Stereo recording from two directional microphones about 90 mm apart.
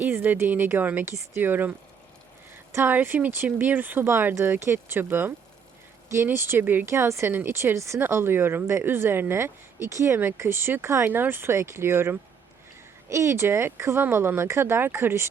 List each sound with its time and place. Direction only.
0.0 s speech: 20° right (ahead or behind)
2.7 s speech: 20° right (ahead or behind)